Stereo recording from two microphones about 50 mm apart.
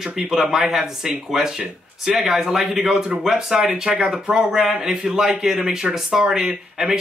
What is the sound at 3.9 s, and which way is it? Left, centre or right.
Speech, right.